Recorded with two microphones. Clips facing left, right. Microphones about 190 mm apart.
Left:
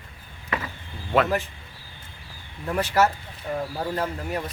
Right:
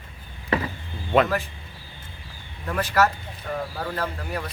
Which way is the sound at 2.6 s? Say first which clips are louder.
Left 1 dB; 15° left (ahead or behind).